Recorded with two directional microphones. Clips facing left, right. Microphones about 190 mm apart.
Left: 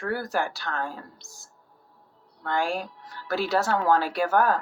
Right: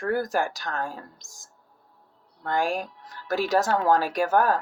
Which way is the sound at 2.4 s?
15° right (ahead or behind).